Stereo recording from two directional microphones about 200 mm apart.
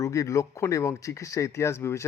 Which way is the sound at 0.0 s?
15° left (ahead or behind).